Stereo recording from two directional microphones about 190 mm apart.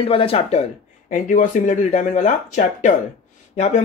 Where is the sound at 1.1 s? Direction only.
40° left (ahead or behind).